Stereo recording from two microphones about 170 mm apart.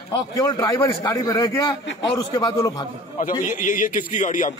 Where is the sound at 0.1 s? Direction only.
20° left (ahead or behind).